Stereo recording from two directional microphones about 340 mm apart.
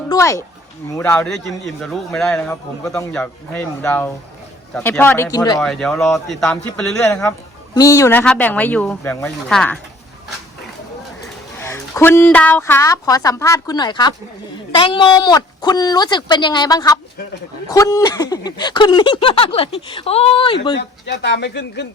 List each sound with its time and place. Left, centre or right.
0.1 s speech: centre
11.6 s speech: centre
20.7 s speech: left